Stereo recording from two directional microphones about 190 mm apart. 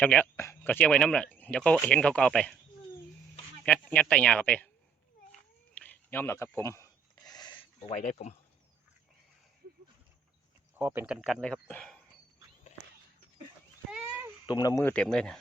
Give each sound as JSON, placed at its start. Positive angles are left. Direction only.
{"t": 0.0, "sound": "speech", "side_deg": 5}
{"t": 3.6, "sound": "speech", "side_deg": 0}
{"t": 5.7, "sound": "a sound", "side_deg": 10}
{"t": 7.9, "sound": "speech", "side_deg": 40}
{"t": 10.8, "sound": "speech", "side_deg": -10}
{"t": 11.3, "sound": "speech", "side_deg": 5}
{"t": 13.9, "sound": "a sound", "side_deg": -10}
{"t": 14.4, "sound": "speech", "side_deg": 20}